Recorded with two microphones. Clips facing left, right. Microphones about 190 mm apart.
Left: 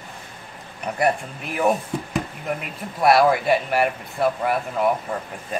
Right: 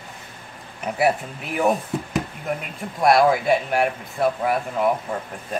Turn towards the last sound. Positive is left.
turn(degrees=0)  # may be behind; listen again after turning